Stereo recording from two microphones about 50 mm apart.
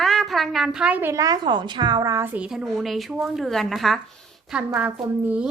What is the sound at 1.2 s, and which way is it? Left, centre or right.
Speech, right.